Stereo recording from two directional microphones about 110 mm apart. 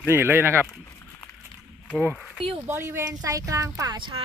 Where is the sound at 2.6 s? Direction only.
20° right (ahead or behind).